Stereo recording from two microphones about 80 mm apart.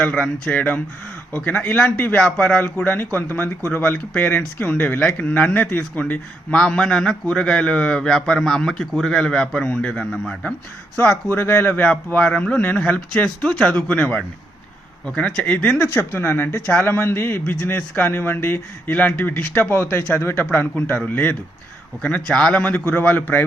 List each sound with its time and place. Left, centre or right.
0.0 s a man's voice: centre
11.4 s speech: left
11.7 s a man's voice: centre
16.0 s a man's voice: left